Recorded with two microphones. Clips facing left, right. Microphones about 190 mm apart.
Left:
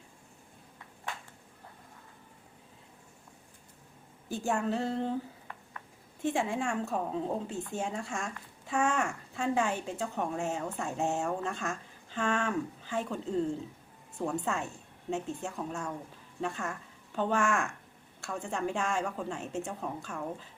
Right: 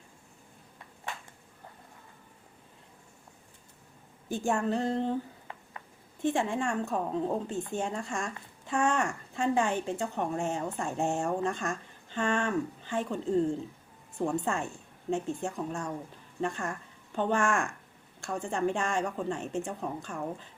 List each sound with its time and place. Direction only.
4.3 s a woman's voice: 5° left (ahead or behind)
5.5 s a sound: 20° right (ahead or behind)
6.2 s a woman's voice: 5° left (ahead or behind)
14.4 s a woman's voice: 5° left (ahead or behind)